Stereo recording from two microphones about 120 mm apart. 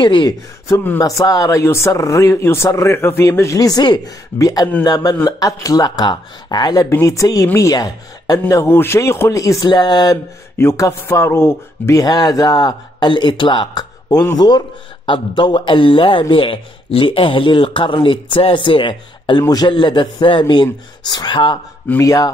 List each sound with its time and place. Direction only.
0.0 s speech: 40° left (ahead or behind)
0.7 s speech: 25° left (ahead or behind)
10.6 s a man's voice: 25° left (ahead or behind)